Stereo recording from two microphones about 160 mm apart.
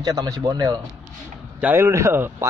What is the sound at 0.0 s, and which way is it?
Speech, 20° right (ahead or behind).